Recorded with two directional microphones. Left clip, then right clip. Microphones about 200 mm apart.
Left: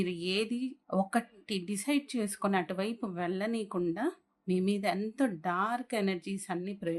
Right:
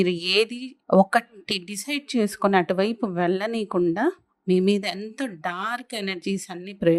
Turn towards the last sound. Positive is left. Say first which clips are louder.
# right 13 dB
turn(degrees=-45)  # may be behind; listen again after turning